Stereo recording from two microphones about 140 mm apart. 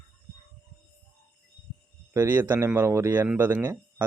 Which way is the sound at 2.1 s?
15° right (ahead or behind).